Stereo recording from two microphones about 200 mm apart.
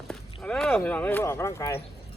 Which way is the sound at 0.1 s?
5° left (ahead or behind).